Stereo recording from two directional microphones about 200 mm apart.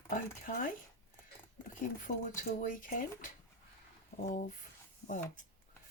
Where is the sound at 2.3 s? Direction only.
40° left (ahead or behind).